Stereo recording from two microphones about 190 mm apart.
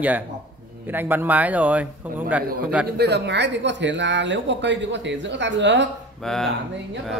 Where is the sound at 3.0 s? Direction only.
60° right (ahead or behind).